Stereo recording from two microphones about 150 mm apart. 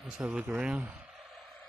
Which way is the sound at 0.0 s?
5° right (ahead or behind).